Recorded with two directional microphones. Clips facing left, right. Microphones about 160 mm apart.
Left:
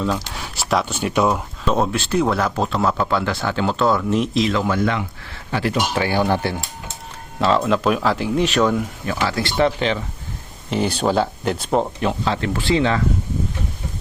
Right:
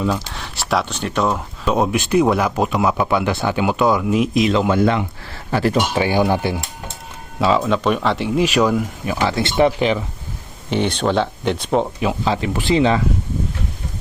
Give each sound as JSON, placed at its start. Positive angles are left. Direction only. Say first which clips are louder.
{"t": 0.3, "sound": "speech", "louder": "even", "side_deg": 0}
{"t": 1.6, "sound": "speech", "louder": "right 2 dB", "side_deg": -10}
{"t": 4.4, "sound": "speech", "louder": "right 3 dB", "side_deg": -20}
{"t": 5.5, "sound": "speech", "louder": "right 4 dB", "side_deg": -40}
{"t": 5.9, "sound": "speech", "louder": "right 2 dB", "side_deg": -15}
{"t": 7.3, "sound": "speech", "louder": "right 1 dB", "side_deg": 0}
{"t": 9.0, "sound": "speech", "louder": "right 3 dB", "side_deg": -20}
{"t": 10.7, "sound": "speech", "louder": "right 1 dB", "side_deg": 5}
{"t": 11.9, "sound": "speech", "louder": "right 2 dB", "side_deg": -10}